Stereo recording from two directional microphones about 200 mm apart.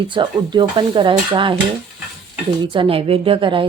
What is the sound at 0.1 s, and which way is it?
A woman's voice, 25° right (ahead or behind).